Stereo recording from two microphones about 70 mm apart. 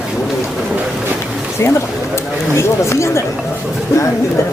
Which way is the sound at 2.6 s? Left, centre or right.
Left.